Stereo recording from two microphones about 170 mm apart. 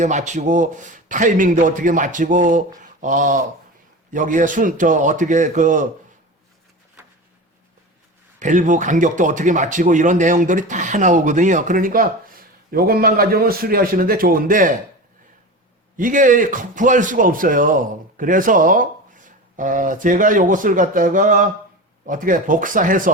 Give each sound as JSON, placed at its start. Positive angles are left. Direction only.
{"t": 0.0, "sound": "speech", "side_deg": -45}
{"t": 8.4, "sound": "speech", "side_deg": -50}
{"t": 16.0, "sound": "speech", "side_deg": -50}